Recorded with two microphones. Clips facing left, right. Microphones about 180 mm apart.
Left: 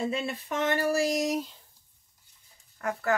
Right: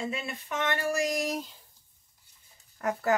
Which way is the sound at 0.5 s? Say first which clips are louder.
Left 3 dB; 35° left (ahead or behind).